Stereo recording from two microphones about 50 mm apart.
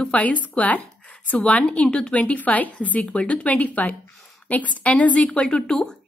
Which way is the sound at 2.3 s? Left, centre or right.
Left.